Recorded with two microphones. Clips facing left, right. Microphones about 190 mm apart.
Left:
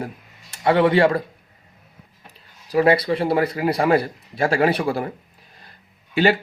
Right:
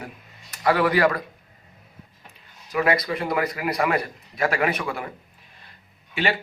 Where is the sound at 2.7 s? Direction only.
30° left (ahead or behind).